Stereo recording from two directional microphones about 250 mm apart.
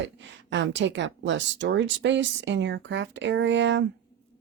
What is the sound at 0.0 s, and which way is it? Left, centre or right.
Speech, right.